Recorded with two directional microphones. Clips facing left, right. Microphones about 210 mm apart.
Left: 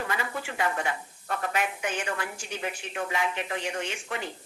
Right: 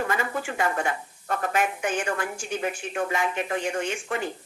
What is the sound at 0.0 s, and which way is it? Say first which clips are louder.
Speech: right 5 dB; 50° right (ahead or behind).